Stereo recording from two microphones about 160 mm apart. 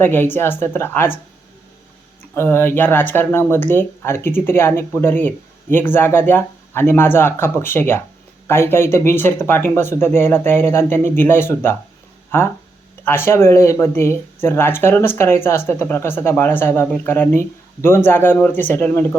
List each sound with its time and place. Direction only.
0.0 s speech: 15° left (ahead or behind)
2.3 s speech: 15° left (ahead or behind)